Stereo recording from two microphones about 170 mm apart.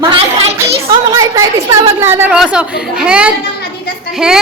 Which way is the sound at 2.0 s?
15° right (ahead or behind).